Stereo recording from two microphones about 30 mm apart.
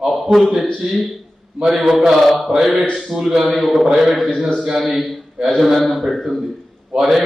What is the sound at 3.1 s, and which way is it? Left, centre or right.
Speech, centre.